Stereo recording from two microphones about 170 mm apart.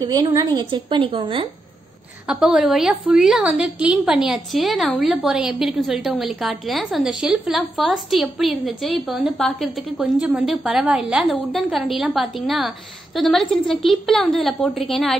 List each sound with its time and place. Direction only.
0.0 s a woman's voice: 20° right (ahead or behind)
2.2 s a woman's voice: centre (ahead or behind)